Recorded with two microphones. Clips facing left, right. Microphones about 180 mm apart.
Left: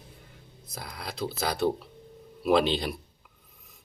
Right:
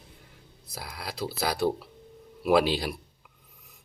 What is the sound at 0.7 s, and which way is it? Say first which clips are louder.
Speech: even; 5° right (ahead or behind).